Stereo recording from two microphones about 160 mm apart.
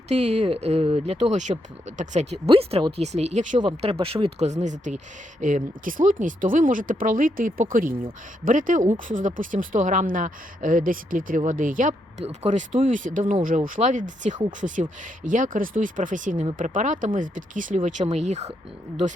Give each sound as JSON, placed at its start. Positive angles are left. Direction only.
{"t": 0.1, "sound": "speech", "side_deg": -45}
{"t": 3.6, "sound": "a woman's voice", "side_deg": -35}
{"t": 12.2, "sound": "a woman's voice", "side_deg": -45}